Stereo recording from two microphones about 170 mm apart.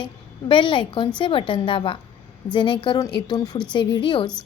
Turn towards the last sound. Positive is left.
turn(degrees=30)  # may be behind; listen again after turning